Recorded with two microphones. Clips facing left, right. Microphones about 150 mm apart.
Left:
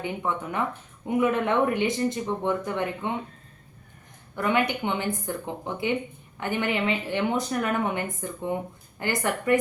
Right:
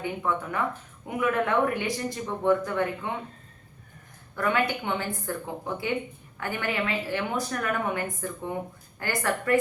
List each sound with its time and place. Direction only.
0.0 s a woman's voice: 20° left (ahead or behind)
4.4 s a woman's voice: 20° left (ahead or behind)